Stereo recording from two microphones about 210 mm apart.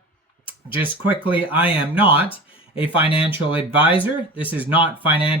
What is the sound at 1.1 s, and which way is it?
Speech, 5° right (ahead or behind).